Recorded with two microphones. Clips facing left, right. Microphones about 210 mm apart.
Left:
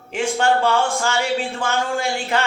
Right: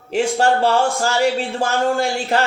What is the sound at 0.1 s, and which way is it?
A man's voice, 35° right (ahead or behind).